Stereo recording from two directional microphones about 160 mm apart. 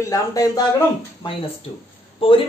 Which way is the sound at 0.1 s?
20° left (ahead or behind).